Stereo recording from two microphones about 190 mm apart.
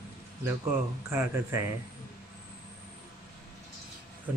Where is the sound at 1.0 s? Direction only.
15° right (ahead or behind).